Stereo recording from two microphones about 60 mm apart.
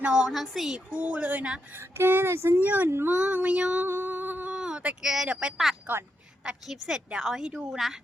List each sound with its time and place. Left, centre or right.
0.0 s a woman's voice: centre
0.9 s speech: right
2.0 s a sound: right
2.3 s speech: right
2.6 s speech: right
3.8 s a sound: right
4.5 s a sound: centre
5.0 s a woman's voice: centre
5.9 s speech: right
6.7 s a woman's voice: centre